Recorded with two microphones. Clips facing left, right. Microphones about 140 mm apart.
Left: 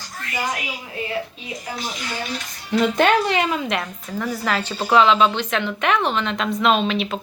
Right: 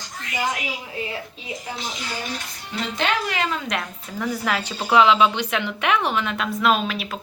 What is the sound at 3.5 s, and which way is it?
Speech, 5° left (ahead or behind).